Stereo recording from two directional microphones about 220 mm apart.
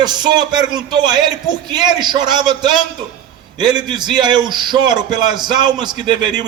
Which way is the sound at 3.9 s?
20° right (ahead or behind).